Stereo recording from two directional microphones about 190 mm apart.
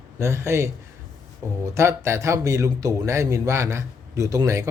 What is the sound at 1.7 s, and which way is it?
A man's voice, 15° right (ahead or behind).